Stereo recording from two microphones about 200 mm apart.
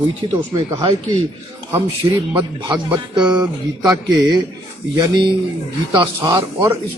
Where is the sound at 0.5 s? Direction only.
20° right (ahead or behind).